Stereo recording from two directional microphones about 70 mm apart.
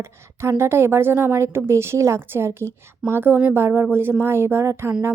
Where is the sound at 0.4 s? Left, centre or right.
Right.